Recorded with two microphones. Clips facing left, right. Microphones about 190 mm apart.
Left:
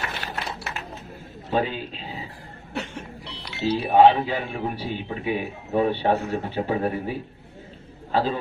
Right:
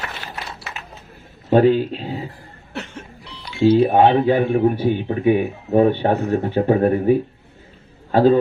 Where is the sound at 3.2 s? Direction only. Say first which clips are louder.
Right 1 dB; 65° left (ahead or behind).